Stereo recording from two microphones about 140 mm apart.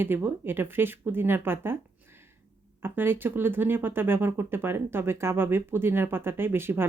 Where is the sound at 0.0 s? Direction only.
15° right (ahead or behind).